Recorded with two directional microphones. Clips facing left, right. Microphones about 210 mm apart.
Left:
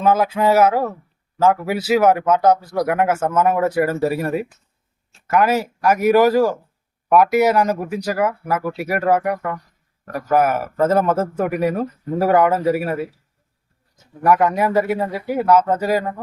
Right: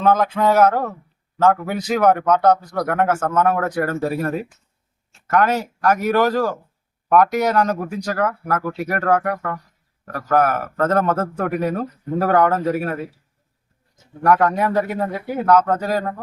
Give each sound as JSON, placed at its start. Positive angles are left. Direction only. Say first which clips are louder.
{"t": 0.0, "sound": "a man's voice", "louder": "even", "side_deg": 5}
{"t": 14.3, "sound": "a man's voice", "louder": "left 1 dB", "side_deg": 5}